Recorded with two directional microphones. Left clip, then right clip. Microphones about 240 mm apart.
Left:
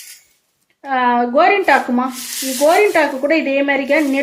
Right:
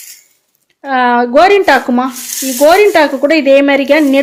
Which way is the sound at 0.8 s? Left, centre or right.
Right.